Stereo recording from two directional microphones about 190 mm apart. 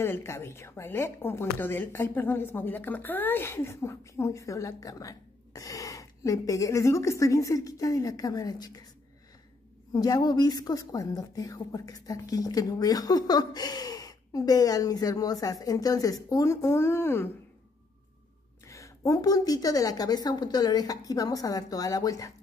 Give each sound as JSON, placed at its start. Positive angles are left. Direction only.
{"t": 0.0, "sound": "speech", "side_deg": 15}
{"t": 9.9, "sound": "a woman's voice", "side_deg": 20}
{"t": 18.7, "sound": "a woman's voice", "side_deg": 15}